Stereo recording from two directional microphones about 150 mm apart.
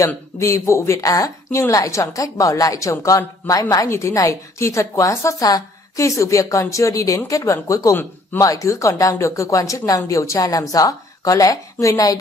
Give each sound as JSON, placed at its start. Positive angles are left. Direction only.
{"t": 0.0, "sound": "a woman's voice", "side_deg": 20}